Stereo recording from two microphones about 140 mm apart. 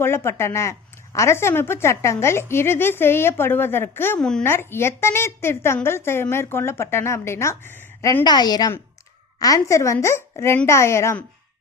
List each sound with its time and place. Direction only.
0.0 s a woman's voice: 15° left (ahead or behind)
4.2 s speech: 5° left (ahead or behind)
4.4 s a woman's voice: 15° left (ahead or behind)
8.2 s a woman's voice: 30° left (ahead or behind)